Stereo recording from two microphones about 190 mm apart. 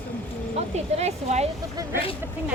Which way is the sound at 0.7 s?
35° right (ahead or behind).